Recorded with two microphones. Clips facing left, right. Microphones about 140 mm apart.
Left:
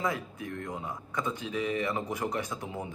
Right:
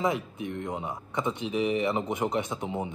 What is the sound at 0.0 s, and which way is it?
Speech, 25° right (ahead or behind).